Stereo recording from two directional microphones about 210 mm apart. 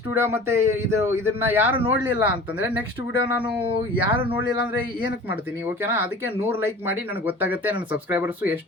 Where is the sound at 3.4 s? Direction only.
25° right (ahead or behind).